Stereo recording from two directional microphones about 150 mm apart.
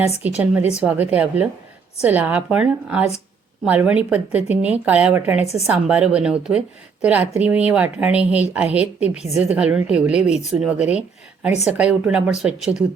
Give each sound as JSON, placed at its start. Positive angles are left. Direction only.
{"t": 0.2, "sound": "a woman's voice", "side_deg": -10}
{"t": 5.4, "sound": "speech", "side_deg": 45}
{"t": 5.6, "sound": "a woman's voice", "side_deg": -10}